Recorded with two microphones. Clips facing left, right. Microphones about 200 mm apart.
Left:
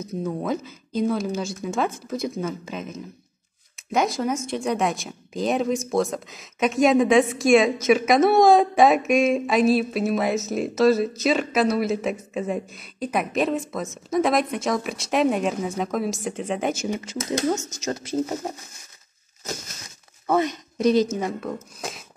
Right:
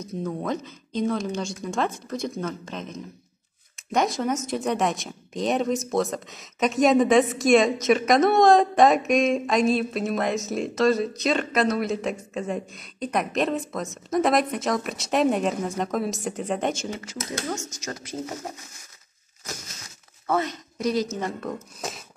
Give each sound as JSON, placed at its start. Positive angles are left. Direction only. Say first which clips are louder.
{"t": 0.2, "sound": "speech", "louder": "left 2 dB", "side_deg": 5}
{"t": 16.8, "sound": "speech", "louder": "left 5 dB", "side_deg": 20}
{"t": 20.2, "sound": "a woman's voice", "louder": "left 4 dB", "side_deg": 15}
{"t": 21.2, "sound": "speech", "louder": "left 2 dB", "side_deg": 0}